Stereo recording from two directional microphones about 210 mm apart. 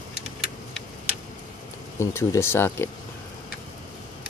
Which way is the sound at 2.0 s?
10° left (ahead or behind).